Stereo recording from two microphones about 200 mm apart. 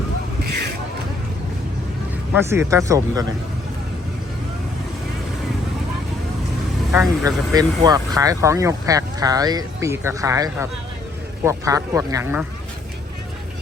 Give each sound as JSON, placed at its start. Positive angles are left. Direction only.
{"t": 2.3, "sound": "speech", "side_deg": -10}
{"t": 6.9, "sound": "speech", "side_deg": -5}
{"t": 7.3, "sound": "speech", "side_deg": -20}